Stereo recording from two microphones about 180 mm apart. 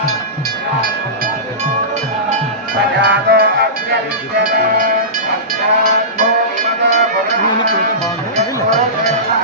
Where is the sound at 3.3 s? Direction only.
55° right (ahead or behind).